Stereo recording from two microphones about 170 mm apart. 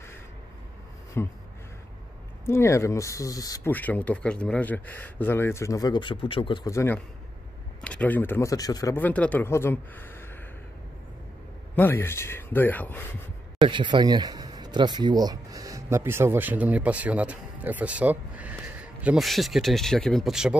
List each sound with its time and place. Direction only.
1.1 s speech: 15° left (ahead or behind)
2.4 s speech: 15° left (ahead or behind)
3.7 s speech: 10° left (ahead or behind)
11.7 s speech: 15° left (ahead or behind)
13.6 s speech: 30° right (ahead or behind); by 20.5 s 5° right (ahead or behind)